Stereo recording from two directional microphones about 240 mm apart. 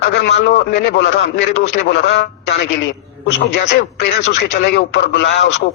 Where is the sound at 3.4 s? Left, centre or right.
Left.